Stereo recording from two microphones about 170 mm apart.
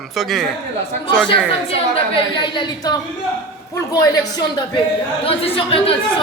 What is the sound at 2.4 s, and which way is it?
Speech, 25° left (ahead or behind).